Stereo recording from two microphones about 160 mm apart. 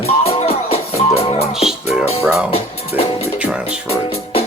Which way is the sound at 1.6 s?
Centre (ahead or behind).